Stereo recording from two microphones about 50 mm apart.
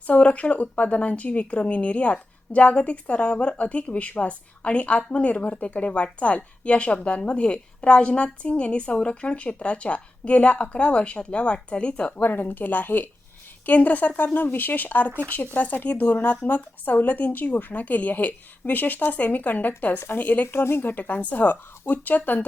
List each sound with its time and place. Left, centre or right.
0.1 s speech: left
12.2 s speech: left
20.5 s speech: left
20.8 s speech: left